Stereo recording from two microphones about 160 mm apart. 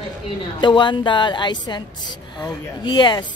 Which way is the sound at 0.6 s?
30° left (ahead or behind).